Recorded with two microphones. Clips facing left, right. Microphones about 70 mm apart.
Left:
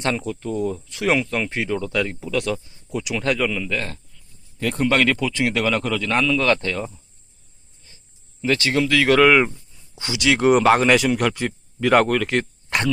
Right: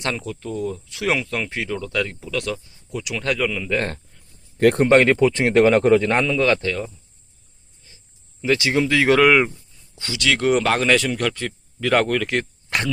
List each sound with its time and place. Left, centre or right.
0.0 s speech: centre
3.8 s speech: right
4.5 s speech: right
4.9 s speech: right
6.4 s speech: centre
7.9 s a sound: centre
8.4 s speech: centre
9.1 s speech: centre
9.9 s speech: centre